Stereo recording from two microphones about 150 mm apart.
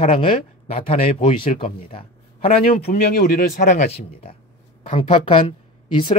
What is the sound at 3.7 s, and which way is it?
Speech, 50° left (ahead or behind).